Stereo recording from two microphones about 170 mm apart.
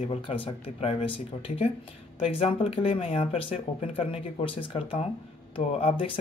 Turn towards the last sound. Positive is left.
turn(degrees=30)  # may be behind; listen again after turning